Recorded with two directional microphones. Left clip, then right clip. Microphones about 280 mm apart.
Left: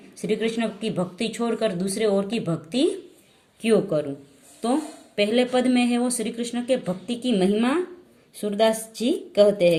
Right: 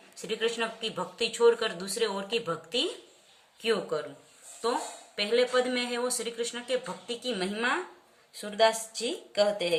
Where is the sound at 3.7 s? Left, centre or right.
Centre.